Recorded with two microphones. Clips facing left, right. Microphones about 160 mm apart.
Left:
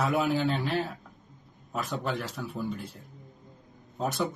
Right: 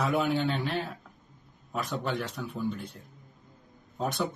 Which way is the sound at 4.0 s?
Centre (ahead or behind).